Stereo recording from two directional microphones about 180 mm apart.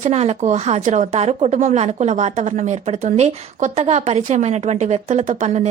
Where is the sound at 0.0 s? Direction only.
35° right (ahead or behind).